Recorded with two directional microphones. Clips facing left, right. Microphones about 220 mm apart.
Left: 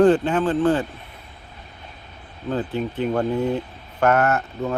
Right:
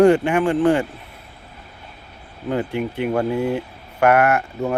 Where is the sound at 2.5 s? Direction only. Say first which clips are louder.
Right 2 dB; 10° right (ahead or behind).